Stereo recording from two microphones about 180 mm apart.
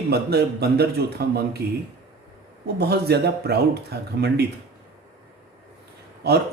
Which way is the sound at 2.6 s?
65° right (ahead or behind).